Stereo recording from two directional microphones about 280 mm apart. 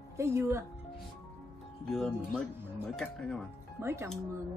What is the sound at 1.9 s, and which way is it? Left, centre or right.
Speech, centre.